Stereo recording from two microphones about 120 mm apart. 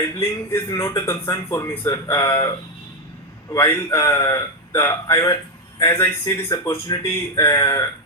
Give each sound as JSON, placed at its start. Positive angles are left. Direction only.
{"t": 0.1, "sound": "speech", "side_deg": 20}